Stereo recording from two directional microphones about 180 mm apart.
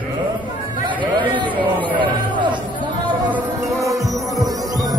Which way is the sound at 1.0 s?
25° right (ahead or behind).